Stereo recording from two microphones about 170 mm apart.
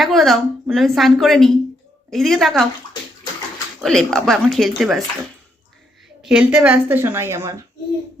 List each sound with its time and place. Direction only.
0.0 s a woman's voice: centre (ahead or behind)
3.8 s a woman's voice: centre (ahead or behind)
6.2 s a woman's voice: 5° right (ahead or behind)